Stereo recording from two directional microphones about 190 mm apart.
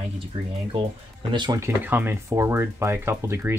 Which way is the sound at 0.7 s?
25° right (ahead or behind).